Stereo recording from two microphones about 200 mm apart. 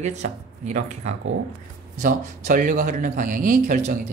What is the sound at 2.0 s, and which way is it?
A man's voice, 45° right (ahead or behind).